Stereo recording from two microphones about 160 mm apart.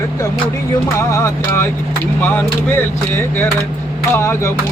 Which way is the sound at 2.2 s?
10° left (ahead or behind).